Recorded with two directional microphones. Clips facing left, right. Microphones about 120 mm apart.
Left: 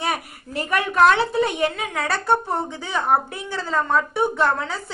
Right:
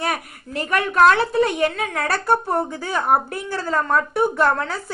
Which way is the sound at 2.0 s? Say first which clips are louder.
Right 1 dB; centre (ahead or behind).